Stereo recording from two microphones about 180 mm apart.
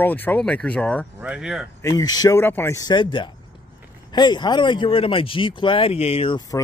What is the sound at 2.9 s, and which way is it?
Speech, 25° left (ahead or behind).